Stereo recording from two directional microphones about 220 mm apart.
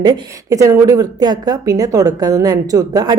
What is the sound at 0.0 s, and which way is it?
A woman's voice, 15° right (ahead or behind).